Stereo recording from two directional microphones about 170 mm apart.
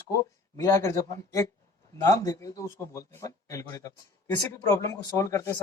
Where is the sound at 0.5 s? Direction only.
20° left (ahead or behind).